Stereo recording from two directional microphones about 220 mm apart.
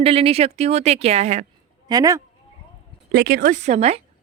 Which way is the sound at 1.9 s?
15° right (ahead or behind).